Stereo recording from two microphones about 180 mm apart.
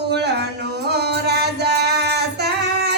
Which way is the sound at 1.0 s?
65° right (ahead or behind).